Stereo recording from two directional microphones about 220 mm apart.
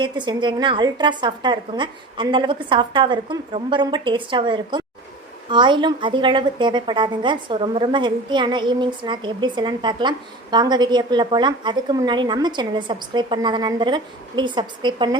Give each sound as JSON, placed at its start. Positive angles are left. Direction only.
{"t": 0.0, "sound": "a woman's voice", "side_deg": -20}